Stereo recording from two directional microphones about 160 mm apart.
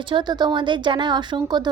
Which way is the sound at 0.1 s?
30° right (ahead or behind).